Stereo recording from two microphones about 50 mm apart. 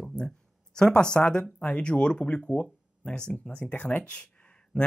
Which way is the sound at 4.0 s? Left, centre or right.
Left.